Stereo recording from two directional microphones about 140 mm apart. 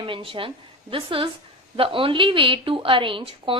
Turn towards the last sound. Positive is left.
turn(degrees=-40)  # may be behind; listen again after turning